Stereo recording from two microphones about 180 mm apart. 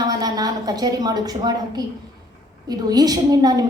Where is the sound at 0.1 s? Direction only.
20° right (ahead or behind).